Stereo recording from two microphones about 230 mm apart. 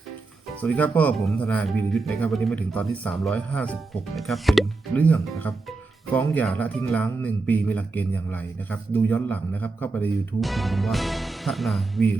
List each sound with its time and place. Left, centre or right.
0.6 s speech: centre